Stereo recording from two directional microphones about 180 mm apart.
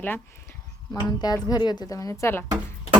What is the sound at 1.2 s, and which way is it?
Speech, 20° left (ahead or behind).